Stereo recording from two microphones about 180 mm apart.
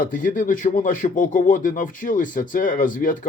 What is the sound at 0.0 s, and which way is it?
Speech, 50° left (ahead or behind).